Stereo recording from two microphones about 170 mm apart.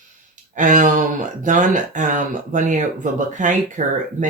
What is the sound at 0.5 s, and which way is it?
Speech, 50° right (ahead or behind).